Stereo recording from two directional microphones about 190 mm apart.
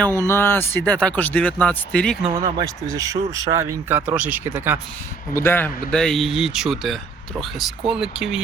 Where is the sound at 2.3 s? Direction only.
20° right (ahead or behind).